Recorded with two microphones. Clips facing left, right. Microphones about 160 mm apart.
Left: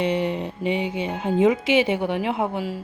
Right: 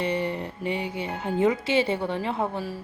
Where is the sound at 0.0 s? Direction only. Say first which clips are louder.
Left 4 dB; 20° left (ahead or behind).